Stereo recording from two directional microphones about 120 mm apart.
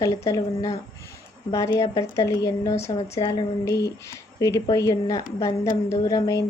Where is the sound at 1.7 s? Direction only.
30° left (ahead or behind).